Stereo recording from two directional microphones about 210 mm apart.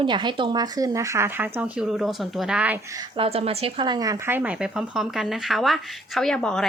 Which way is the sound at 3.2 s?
25° right (ahead or behind).